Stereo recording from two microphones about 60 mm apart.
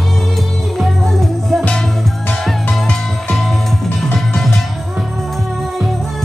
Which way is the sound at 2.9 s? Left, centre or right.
Centre.